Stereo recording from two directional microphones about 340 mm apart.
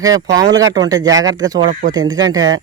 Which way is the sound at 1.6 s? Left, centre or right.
Right.